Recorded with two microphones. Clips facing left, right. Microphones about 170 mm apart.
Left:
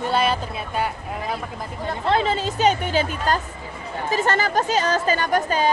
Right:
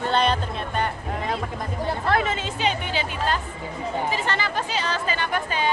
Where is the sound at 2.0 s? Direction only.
30° left (ahead or behind).